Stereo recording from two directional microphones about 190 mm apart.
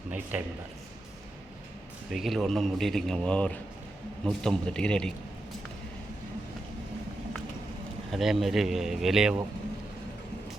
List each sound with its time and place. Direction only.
0.1 s a man's voice: 10° right (ahead or behind)
2.1 s a man's voice: centre (ahead or behind)
8.1 s a man's voice: centre (ahead or behind)